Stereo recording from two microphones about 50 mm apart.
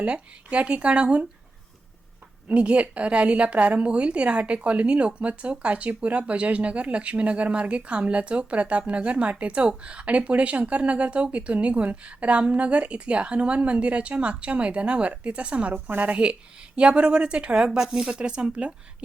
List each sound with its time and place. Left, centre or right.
0.0 s speech: right
2.5 s speech: right
15.7 s a woman's voice: right; by 18.7 s centre